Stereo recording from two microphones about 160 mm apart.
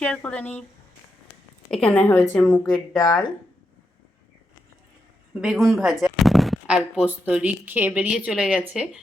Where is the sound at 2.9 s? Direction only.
25° left (ahead or behind).